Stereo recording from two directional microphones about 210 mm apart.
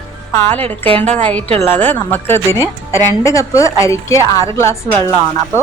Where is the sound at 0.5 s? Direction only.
10° left (ahead or behind).